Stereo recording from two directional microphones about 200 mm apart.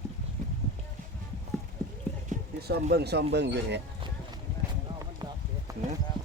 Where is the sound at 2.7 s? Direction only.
55° right (ahead or behind).